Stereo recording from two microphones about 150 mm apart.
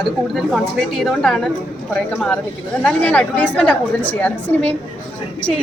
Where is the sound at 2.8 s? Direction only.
10° left (ahead or behind).